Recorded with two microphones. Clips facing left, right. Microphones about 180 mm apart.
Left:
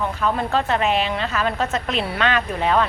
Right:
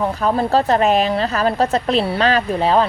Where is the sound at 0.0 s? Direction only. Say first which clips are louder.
Right 4 dB; 40° right (ahead or behind).